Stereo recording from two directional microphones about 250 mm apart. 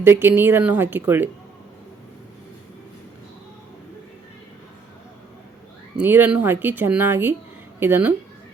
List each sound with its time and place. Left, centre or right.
0.0 s speech: centre
6.0 s speech: centre